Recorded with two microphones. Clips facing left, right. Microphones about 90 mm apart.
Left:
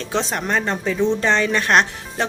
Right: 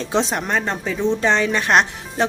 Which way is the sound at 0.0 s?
15° right (ahead or behind).